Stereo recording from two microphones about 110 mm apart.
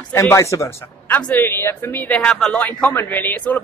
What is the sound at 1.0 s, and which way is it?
A man's voice, 15° left (ahead or behind).